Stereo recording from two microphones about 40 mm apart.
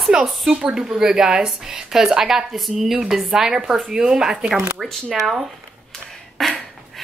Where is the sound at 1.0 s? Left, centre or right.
Centre.